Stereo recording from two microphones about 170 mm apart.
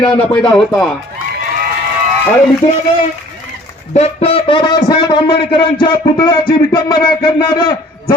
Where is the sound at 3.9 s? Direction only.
35° left (ahead or behind).